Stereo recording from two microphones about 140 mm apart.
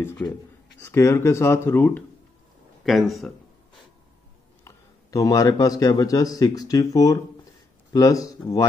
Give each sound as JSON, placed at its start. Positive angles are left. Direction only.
{"t": 0.2, "sound": "speech", "side_deg": 15}
{"t": 2.8, "sound": "speech", "side_deg": 0}
{"t": 4.6, "sound": "a man's voice", "side_deg": 25}